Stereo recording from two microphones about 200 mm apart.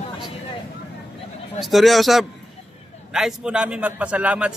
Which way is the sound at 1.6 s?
Centre (ahead or behind).